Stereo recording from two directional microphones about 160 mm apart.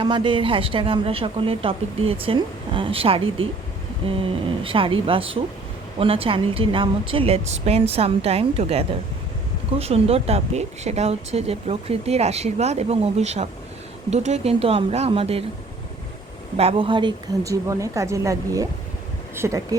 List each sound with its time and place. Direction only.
0.0 s speech: 30° right (ahead or behind)
16.6 s a woman's voice: 35° right (ahead or behind); by 19.6 s 20° right (ahead or behind)